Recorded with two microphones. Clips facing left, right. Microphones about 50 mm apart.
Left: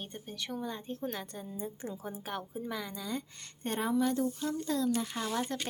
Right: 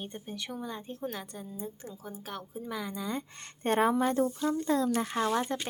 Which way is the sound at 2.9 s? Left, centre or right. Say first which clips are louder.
Right 3 dB; centre.